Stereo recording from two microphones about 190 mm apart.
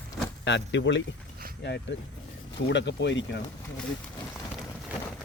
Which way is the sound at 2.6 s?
65° left (ahead or behind).